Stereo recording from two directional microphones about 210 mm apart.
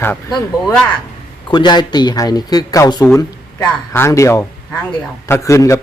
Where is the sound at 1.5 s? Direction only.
20° left (ahead or behind).